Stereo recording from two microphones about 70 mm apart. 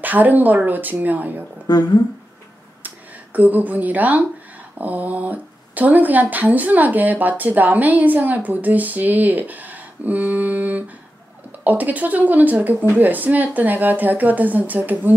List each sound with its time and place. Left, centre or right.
0.0 s speech: right
1.7 s speech: left
3.3 s speech: right